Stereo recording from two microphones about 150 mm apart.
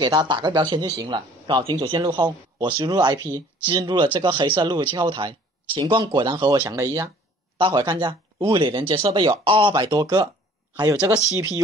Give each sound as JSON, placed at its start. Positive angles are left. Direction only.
{"t": 0.0, "sound": "speech", "side_deg": -30}
{"t": 7.5, "sound": "speech", "side_deg": -35}